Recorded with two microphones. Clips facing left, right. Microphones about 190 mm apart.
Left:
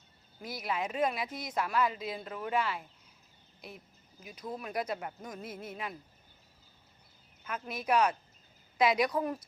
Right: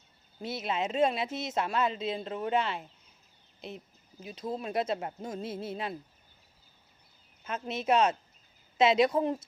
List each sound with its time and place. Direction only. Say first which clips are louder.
0.3 s speech: right 3 dB; 25° right (ahead or behind)
7.4 s speech: right 4 dB; 25° right (ahead or behind)